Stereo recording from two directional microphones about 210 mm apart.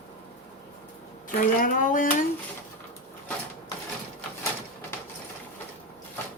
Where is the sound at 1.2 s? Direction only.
40° left (ahead or behind).